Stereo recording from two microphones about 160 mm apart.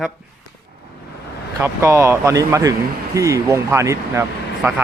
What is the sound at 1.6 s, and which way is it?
A man's voice, 15° right (ahead or behind).